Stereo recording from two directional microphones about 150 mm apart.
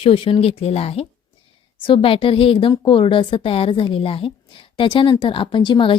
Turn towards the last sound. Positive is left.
turn(degrees=30)  # may be behind; listen again after turning